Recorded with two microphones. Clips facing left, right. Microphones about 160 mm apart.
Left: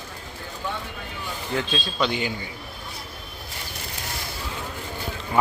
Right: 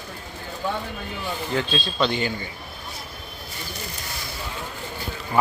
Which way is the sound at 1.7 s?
10° left (ahead or behind).